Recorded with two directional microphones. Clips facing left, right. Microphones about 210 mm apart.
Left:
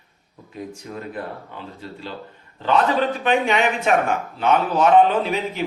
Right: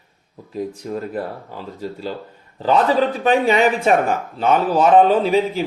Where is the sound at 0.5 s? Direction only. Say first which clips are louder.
Right 7 dB; 35° right (ahead or behind).